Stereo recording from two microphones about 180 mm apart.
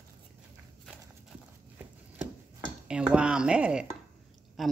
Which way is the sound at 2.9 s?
5° right (ahead or behind).